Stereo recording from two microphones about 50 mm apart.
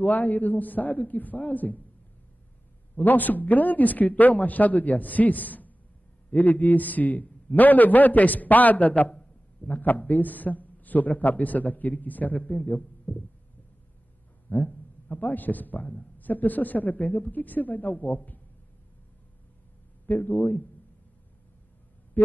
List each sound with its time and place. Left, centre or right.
0.0 s a man's voice: left
3.0 s a man's voice: left
14.5 s a man's voice: left
20.1 s a man's voice: left
22.2 s a sound: left